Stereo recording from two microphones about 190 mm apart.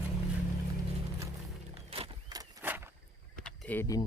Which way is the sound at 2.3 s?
10° right (ahead or behind).